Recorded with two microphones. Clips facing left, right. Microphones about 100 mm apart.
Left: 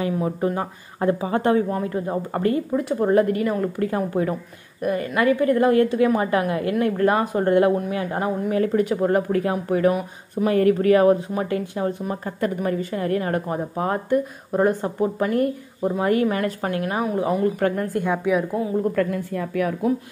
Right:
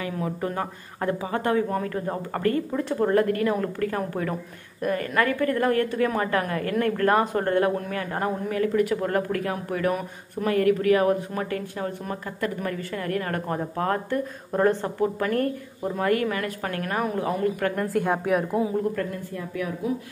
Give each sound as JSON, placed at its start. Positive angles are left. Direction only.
{"t": 0.0, "sound": "speech", "side_deg": 30}
{"t": 1.7, "sound": "speech", "side_deg": 15}
{"t": 3.4, "sound": "speech", "side_deg": 5}
{"t": 3.8, "sound": "speech", "side_deg": 20}
{"t": 11.3, "sound": "speech", "side_deg": 20}
{"t": 16.8, "sound": "speech", "side_deg": 10}
{"t": 17.7, "sound": "speech", "side_deg": 0}
{"t": 18.9, "sound": "a woman's voice", "side_deg": 90}